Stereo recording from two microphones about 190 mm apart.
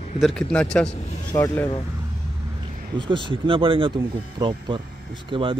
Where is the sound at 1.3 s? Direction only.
15° left (ahead or behind).